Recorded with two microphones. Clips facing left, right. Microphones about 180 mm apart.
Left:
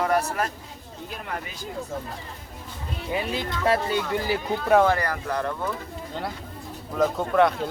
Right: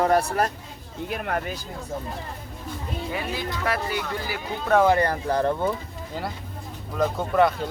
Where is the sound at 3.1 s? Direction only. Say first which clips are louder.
Left 4 dB; 20° left (ahead or behind).